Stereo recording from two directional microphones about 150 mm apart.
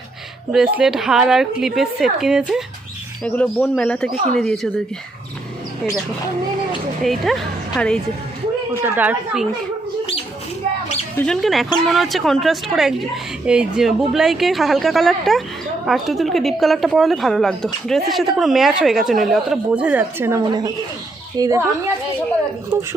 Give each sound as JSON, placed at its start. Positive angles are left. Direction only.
{"t": 0.5, "sound": "speech", "side_deg": -5}
{"t": 3.2, "sound": "speech", "side_deg": 10}
{"t": 7.0, "sound": "speech", "side_deg": 0}
{"t": 8.8, "sound": "a woman's voice", "side_deg": -10}
{"t": 11.2, "sound": "speech", "side_deg": 5}
{"t": 20.4, "sound": "a woman's voice", "side_deg": -25}
{"t": 22.7, "sound": "a woman's voice", "side_deg": -20}